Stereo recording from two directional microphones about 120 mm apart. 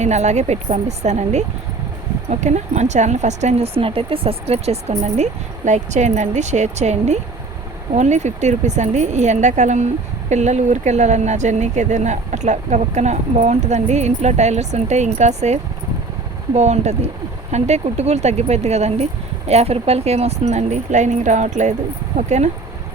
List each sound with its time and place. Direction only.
0.0 s speech: 70° right (ahead or behind)
3.8 s speech: 50° right (ahead or behind); by 15.5 s 70° right (ahead or behind)
16.6 s speech: 70° right (ahead or behind); by 21.8 s 85° right